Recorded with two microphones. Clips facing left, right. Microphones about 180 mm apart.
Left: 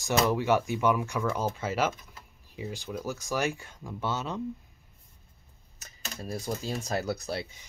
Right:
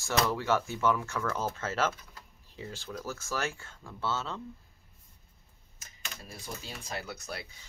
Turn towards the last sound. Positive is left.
turn(degrees=35)  # may be behind; listen again after turning